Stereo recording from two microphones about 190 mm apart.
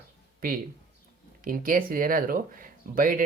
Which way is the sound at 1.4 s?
45° right (ahead or behind).